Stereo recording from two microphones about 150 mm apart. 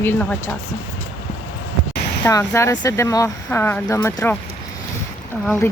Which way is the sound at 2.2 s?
20° left (ahead or behind).